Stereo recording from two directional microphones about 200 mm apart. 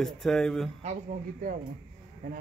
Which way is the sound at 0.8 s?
40° right (ahead or behind).